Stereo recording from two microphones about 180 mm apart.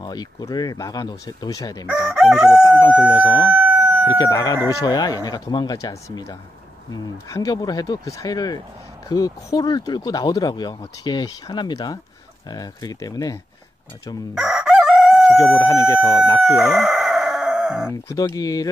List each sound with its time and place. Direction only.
0.0 s speech: 20° left (ahead or behind)
2.1 s crowing: 5° right (ahead or behind)
2.6 s speech: 15° left (ahead or behind)
3.4 s chicken: 10° right (ahead or behind)
4.2 s speech: 20° left (ahead or behind)
14.3 s chicken: centre (ahead or behind)
15.3 s speech: 20° left (ahead or behind)
16.4 s chicken: centre (ahead or behind)
18.0 s speech: 20° left (ahead or behind)